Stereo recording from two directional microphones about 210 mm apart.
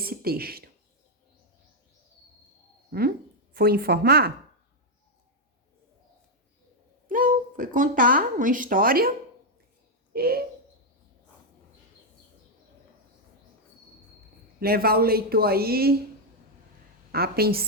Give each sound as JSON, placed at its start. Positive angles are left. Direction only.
{"t": 0.0, "sound": "speech", "side_deg": -45}
{"t": 2.9, "sound": "speech", "side_deg": -45}
{"t": 7.1, "sound": "speech", "side_deg": -40}
{"t": 10.1, "sound": "bird", "side_deg": -45}
{"t": 14.6, "sound": "speech", "side_deg": -45}
{"t": 17.1, "sound": "speech", "side_deg": -50}